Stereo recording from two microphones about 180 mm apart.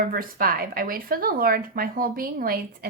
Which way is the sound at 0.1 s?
55° right (ahead or behind).